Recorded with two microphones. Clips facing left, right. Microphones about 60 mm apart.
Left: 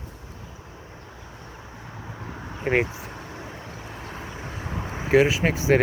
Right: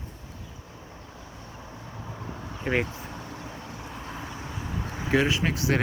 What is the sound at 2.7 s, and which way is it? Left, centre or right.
Speech, left.